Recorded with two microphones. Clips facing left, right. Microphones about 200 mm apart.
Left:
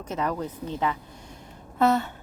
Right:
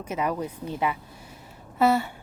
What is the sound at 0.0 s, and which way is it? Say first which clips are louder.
Speech: right 1 dB; 10° right (ahead or behind).